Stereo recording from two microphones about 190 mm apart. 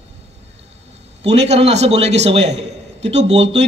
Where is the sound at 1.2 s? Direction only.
35° right (ahead or behind).